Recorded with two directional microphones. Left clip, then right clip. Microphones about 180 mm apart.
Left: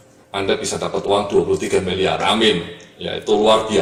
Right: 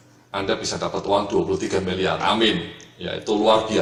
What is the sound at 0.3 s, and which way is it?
Speech, 40° right (ahead or behind).